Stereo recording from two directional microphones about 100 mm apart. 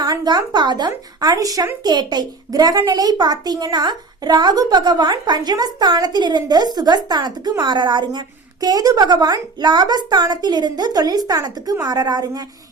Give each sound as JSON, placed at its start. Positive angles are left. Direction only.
{"t": 0.0, "sound": "speech", "side_deg": -40}
{"t": 8.6, "sound": "a woman's voice", "side_deg": -40}